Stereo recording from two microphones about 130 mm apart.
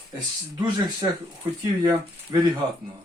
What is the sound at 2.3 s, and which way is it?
Speech, 30° right (ahead or behind).